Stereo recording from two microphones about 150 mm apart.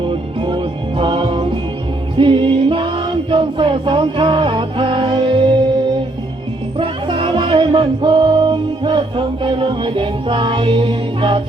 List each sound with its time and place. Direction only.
0.0 s music: 35° right (ahead or behind)
6.7 s music: 35° right (ahead or behind)